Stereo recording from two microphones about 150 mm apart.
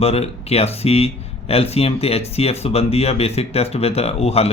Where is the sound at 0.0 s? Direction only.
45° left (ahead or behind).